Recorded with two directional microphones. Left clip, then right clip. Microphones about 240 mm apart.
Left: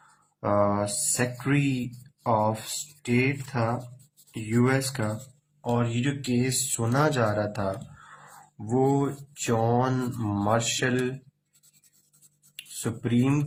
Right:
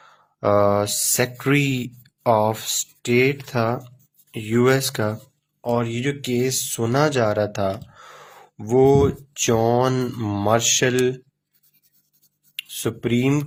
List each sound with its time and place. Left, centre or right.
0.3 s speech: right
12.5 s speech: right